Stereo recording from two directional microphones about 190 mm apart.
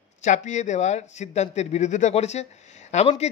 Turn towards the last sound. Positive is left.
turn(degrees=35)  # may be behind; listen again after turning